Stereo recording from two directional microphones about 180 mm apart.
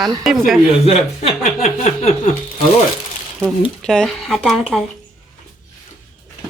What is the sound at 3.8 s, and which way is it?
Speech, 5° left (ahead or behind).